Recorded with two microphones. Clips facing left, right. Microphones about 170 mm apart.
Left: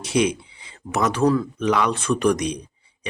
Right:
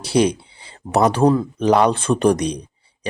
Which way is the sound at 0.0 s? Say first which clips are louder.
Right 4 dB; 35° right (ahead or behind).